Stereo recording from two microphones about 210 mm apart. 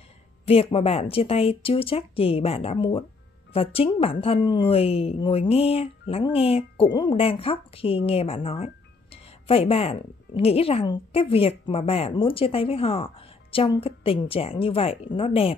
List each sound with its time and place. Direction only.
0.5 s a woman's voice: 25° left (ahead or behind)